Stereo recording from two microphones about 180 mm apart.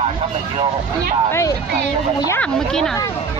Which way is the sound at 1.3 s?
15° left (ahead or behind).